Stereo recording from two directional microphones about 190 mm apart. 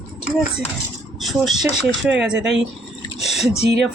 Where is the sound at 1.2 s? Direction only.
Centre (ahead or behind).